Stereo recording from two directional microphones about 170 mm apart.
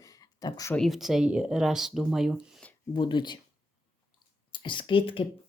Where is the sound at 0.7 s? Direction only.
Centre (ahead or behind).